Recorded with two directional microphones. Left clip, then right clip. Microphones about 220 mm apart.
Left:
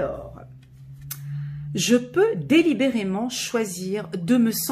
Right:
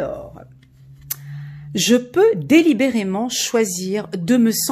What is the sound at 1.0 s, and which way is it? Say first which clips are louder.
Speech: right 3 dB; 45° right (ahead or behind).